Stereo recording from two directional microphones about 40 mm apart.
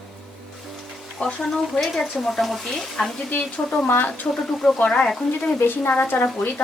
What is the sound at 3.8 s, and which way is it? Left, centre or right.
Speech, left.